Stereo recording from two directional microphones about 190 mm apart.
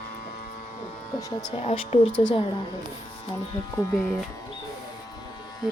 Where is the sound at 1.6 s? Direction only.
30° left (ahead or behind).